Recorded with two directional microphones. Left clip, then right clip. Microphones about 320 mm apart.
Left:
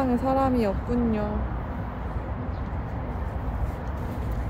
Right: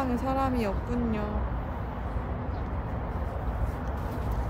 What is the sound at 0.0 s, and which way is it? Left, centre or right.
A woman's voice, centre.